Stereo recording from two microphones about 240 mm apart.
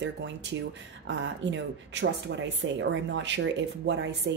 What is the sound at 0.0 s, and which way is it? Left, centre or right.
Speech, right.